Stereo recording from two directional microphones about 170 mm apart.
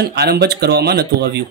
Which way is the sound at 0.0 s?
75° right (ahead or behind).